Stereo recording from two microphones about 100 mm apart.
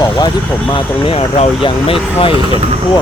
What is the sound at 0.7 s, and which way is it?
Speech, 65° left (ahead or behind).